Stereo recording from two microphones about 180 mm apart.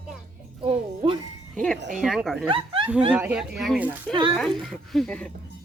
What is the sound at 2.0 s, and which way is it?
Speech, centre (ahead or behind).